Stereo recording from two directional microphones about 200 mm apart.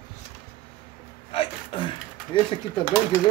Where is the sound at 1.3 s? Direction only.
25° left (ahead or behind).